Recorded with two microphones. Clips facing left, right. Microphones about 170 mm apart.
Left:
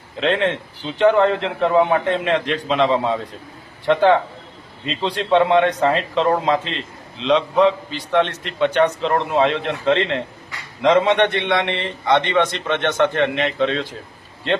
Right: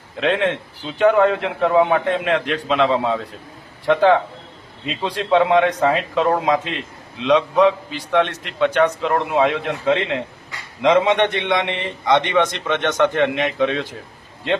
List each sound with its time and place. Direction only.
0.2 s a man's voice: 5° right (ahead or behind)